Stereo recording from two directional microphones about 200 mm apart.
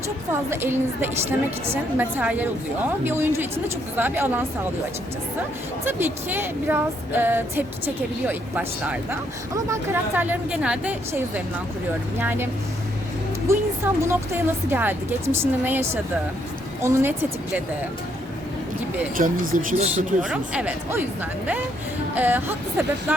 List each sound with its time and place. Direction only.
0.5 s speech: 10° right (ahead or behind)
5.8 s speech: 10° right (ahead or behind)
13.5 s speech: 15° right (ahead or behind)
19.1 s speech: 40° right (ahead or behind)
20.2 s speech: 5° right (ahead or behind)